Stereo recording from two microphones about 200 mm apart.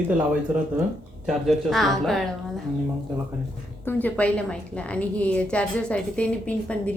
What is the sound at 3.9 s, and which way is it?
A woman's voice, 10° left (ahead or behind).